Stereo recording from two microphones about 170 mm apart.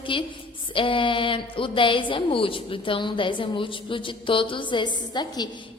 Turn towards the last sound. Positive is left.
turn(degrees=25)  # may be behind; listen again after turning